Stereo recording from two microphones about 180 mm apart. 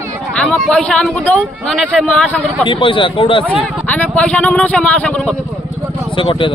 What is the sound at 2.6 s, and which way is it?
Speech, 30° left (ahead or behind).